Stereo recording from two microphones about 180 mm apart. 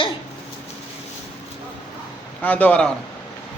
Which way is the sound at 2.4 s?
10° left (ahead or behind).